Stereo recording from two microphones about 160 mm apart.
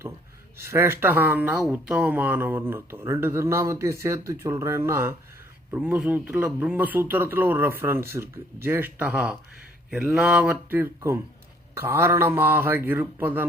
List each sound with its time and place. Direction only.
0.5 s speech: 15° right (ahead or behind)